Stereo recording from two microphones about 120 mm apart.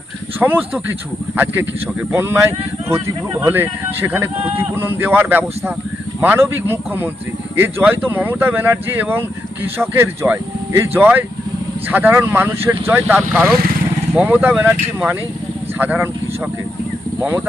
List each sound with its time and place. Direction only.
0.3 s speech: 15° right (ahead or behind)
14.2 s speech: 15° right (ahead or behind)
17.2 s speech: 20° right (ahead or behind)